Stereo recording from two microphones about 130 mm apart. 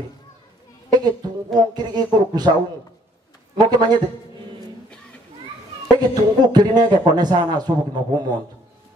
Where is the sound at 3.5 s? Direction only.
35° right (ahead or behind).